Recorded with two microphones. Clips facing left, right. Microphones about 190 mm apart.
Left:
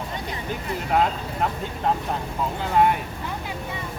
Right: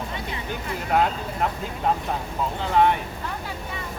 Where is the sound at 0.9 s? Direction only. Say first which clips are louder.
Even; centre (ahead or behind).